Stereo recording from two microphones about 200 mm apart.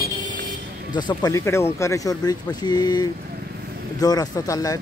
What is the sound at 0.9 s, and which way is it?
Speech, 20° left (ahead or behind).